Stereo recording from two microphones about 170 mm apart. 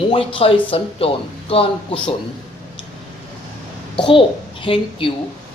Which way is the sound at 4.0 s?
30° left (ahead or behind).